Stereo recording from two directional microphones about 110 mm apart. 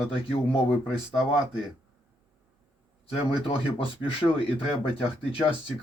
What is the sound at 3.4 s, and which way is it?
Speech, 55° left (ahead or behind).